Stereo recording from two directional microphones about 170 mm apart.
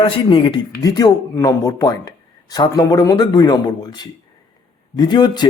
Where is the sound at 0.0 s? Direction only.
30° left (ahead or behind).